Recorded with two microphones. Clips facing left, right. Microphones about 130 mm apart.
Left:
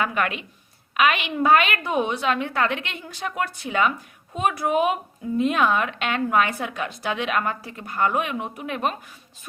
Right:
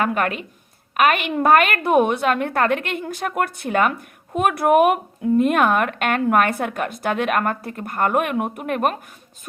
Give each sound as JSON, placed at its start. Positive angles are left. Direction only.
{"t": 0.0, "sound": "a woman's voice", "side_deg": -45}